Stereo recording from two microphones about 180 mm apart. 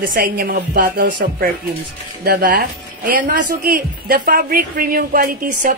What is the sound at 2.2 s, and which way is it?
Speech, 60° right (ahead or behind).